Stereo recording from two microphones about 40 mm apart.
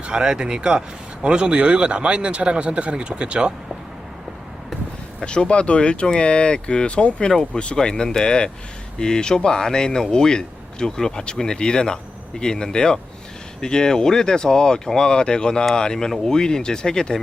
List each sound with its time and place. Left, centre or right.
0.0 s speech: centre
5.2 s speech: left